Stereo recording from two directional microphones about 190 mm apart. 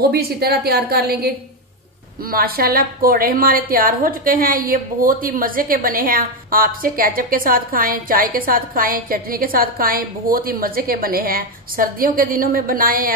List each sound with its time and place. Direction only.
0.1 s a woman's voice: 55° right (ahead or behind)